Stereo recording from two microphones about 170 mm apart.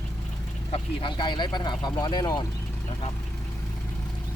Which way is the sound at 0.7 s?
30° left (ahead or behind).